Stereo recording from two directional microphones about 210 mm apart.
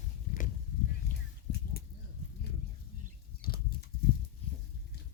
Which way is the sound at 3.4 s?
45° left (ahead or behind).